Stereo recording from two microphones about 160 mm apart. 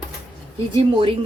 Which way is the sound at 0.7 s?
35° right (ahead or behind).